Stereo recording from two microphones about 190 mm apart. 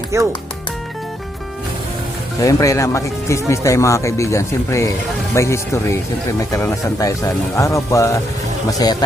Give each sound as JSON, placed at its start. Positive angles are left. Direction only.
{"t": 0.1, "sound": "speech", "side_deg": -15}
{"t": 2.4, "sound": "a man's voice", "side_deg": 15}